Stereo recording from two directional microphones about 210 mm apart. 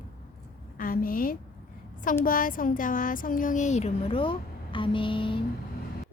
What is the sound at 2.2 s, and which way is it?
Speech, 40° left (ahead or behind).